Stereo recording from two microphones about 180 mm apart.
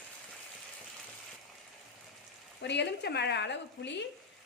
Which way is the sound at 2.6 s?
75° left (ahead or behind).